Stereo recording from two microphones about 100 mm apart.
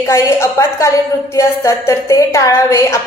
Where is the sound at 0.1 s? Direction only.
25° left (ahead or behind).